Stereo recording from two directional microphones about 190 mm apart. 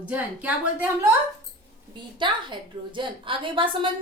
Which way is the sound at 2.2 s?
25° right (ahead or behind).